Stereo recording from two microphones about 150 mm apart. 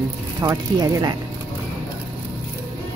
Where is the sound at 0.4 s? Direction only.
25° right (ahead or behind).